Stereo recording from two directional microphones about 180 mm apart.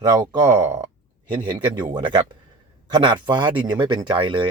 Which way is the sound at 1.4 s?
25° right (ahead or behind).